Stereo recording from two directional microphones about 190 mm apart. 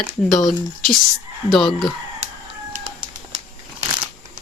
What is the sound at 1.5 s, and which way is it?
Speech, centre (ahead or behind).